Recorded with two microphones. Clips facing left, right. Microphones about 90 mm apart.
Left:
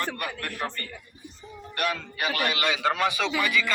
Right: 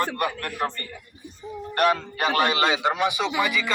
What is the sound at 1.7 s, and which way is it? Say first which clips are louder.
A man's voice: right 8 dB; 40° right (ahead or behind).